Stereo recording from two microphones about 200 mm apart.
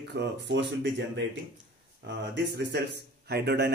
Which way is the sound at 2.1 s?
60° right (ahead or behind).